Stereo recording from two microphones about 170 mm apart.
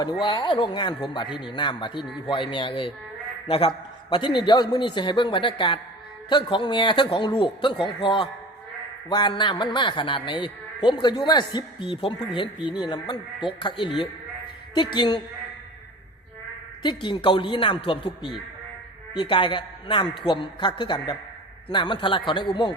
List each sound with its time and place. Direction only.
0.0 s a man's voice: 25° left (ahead or behind)
4.1 s a man's voice: 30° left (ahead or behind)
16.8 s a man's voice: 30° left (ahead or behind)